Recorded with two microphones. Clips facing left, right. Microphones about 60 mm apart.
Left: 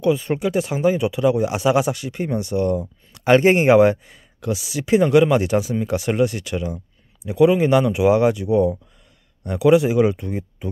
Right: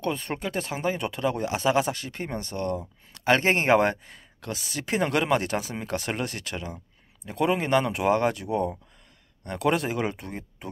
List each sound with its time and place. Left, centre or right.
0.0 s speech: centre